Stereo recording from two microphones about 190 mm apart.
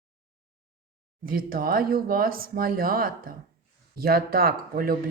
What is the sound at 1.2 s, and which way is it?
A woman's voice, 50° right (ahead or behind).